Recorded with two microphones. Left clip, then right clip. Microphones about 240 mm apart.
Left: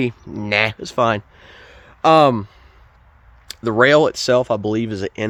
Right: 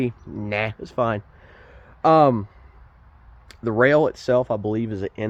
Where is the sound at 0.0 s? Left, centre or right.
Left.